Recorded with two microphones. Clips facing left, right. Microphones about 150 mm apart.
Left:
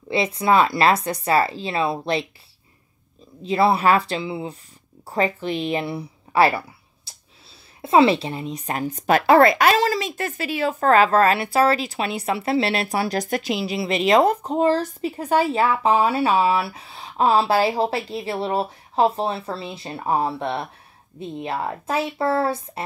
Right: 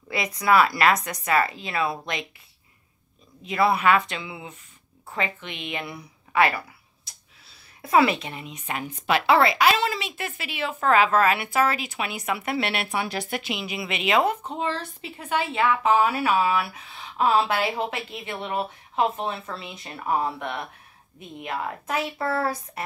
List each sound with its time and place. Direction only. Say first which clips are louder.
0.1 s a woman's voice: left 3 dB; 25° left (ahead or behind)
3.4 s a woman's voice: left 3 dB; 30° left (ahead or behind)
7.1 s a sound: left 3 dB; 30° left (ahead or behind)
7.8 s a woman's voice: left 4 dB; 25° left (ahead or behind)